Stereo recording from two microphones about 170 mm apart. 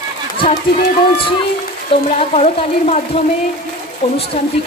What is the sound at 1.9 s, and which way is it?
Speech, 40° left (ahead or behind).